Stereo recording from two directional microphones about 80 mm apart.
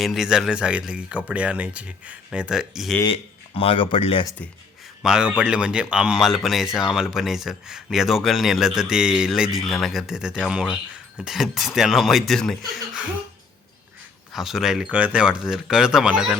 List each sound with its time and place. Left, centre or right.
0.0 s speech: centre
3.8 s speech: left
5.0 s speech: centre
6.2 s speech: centre
14.3 s speech: centre